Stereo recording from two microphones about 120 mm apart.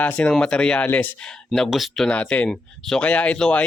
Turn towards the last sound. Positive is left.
turn(degrees=10)  # may be behind; listen again after turning